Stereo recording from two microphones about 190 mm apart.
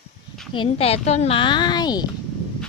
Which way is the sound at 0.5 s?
30° left (ahead or behind).